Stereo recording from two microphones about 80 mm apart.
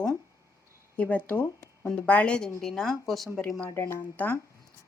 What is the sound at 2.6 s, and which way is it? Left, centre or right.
Speech, centre.